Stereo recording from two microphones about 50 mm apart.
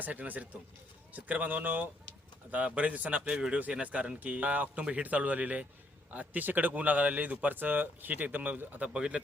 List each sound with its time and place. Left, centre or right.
0.0 s speech: right
8.9 s speech: right